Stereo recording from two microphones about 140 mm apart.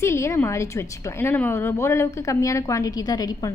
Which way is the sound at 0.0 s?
20° left (ahead or behind).